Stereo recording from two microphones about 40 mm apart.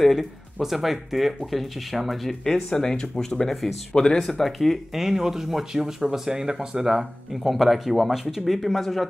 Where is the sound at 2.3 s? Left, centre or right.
Centre.